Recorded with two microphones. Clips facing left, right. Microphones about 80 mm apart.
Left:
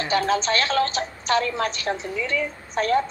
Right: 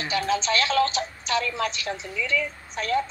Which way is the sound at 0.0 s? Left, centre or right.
Left.